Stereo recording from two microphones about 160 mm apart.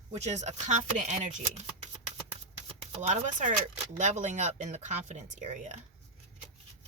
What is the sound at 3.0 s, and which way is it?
Speech, 50° right (ahead or behind).